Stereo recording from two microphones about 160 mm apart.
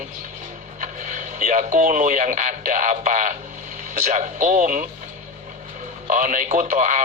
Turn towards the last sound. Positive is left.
turn(degrees=-50)  # may be behind; listen again after turning